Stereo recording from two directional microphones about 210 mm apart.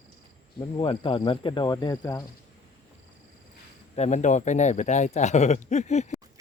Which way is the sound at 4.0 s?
35° left (ahead or behind).